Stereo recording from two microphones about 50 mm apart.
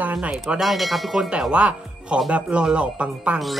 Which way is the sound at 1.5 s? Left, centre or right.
Right.